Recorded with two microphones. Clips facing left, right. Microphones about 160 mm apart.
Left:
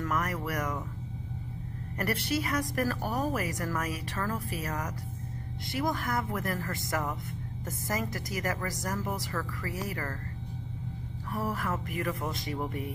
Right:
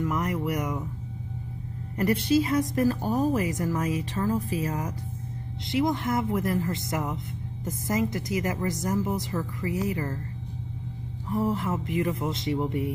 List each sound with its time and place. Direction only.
0.0 s a woman's voice: 20° right (ahead or behind)
2.0 s a woman's voice: 20° right (ahead or behind)
11.2 s a woman's voice: 20° right (ahead or behind)